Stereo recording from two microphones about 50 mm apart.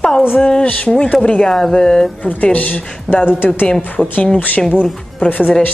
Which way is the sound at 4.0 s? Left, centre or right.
Left.